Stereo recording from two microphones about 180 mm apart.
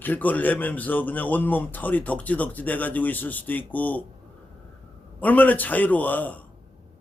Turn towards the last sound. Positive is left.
turn(degrees=10)  # may be behind; listen again after turning